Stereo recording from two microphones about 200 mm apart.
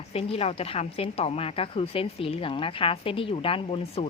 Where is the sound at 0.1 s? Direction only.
30° left (ahead or behind).